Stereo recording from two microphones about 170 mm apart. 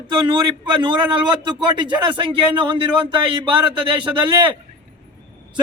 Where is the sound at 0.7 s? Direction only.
30° right (ahead or behind).